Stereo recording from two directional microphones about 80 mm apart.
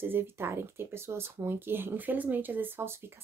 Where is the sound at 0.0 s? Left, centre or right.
Right.